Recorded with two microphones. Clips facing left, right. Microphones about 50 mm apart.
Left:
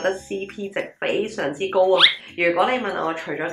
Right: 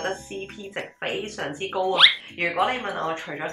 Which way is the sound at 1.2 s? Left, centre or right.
Left.